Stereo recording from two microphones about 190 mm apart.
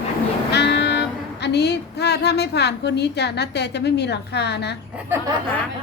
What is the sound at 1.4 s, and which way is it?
A woman's voice, 60° left (ahead or behind).